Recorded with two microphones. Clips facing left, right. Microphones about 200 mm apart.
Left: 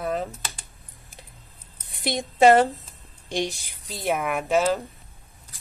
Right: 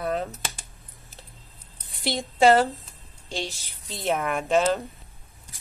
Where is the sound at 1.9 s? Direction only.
20° left (ahead or behind).